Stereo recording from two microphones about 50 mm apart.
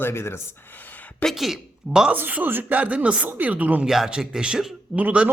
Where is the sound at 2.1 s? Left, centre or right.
Right.